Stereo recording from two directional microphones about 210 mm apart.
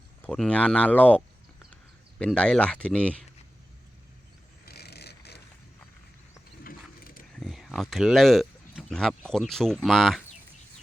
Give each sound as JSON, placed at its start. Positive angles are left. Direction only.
{"t": 0.2, "sound": "speech", "side_deg": 5}
{"t": 4.6, "sound": "vehicle", "side_deg": 50}
{"t": 7.0, "sound": "a sound", "side_deg": 40}
{"t": 7.3, "sound": "speech", "side_deg": 0}